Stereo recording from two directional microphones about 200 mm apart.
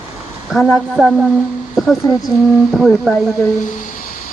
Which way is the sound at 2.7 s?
Centre (ahead or behind).